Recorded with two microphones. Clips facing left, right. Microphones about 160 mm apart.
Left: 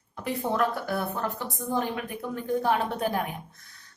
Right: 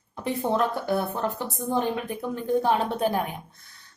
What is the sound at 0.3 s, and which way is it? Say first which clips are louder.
Speech: right 2 dB; 25° right (ahead or behind).